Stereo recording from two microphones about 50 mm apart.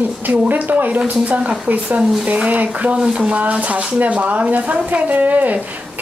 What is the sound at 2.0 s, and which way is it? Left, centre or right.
Speech, centre.